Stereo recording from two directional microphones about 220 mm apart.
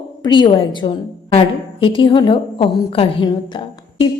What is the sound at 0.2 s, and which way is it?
A woman's voice, 20° left (ahead or behind).